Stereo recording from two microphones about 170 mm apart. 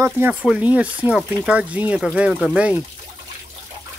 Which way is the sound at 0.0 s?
10° right (ahead or behind).